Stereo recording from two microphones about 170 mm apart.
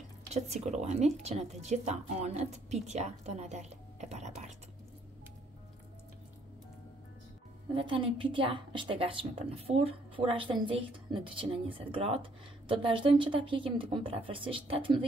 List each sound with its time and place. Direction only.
0.3 s speech: 40° right (ahead or behind)
7.7 s speech: 30° right (ahead or behind)